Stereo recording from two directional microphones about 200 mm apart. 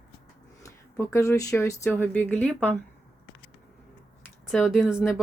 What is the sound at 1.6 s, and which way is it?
Speech, 15° left (ahead or behind).